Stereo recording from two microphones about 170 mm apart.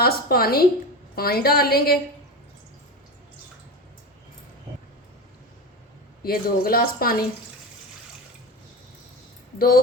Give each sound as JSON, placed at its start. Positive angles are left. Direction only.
{"t": 0.0, "sound": "a woman's voice", "side_deg": 65}
{"t": 6.2, "sound": "a woman's voice", "side_deg": 60}
{"t": 9.6, "sound": "a woman's voice", "side_deg": 60}